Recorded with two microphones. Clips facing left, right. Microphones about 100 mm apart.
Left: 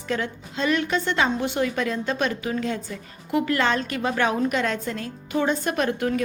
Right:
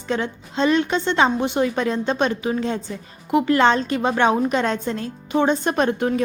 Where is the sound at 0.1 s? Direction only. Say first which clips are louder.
Right 3 dB; 25° right (ahead or behind).